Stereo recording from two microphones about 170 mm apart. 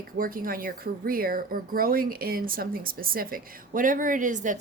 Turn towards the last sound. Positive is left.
turn(degrees=-45)  # may be behind; listen again after turning